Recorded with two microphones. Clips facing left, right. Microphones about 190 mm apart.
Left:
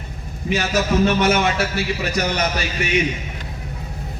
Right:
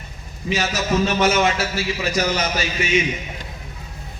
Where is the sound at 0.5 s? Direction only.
55° left (ahead or behind).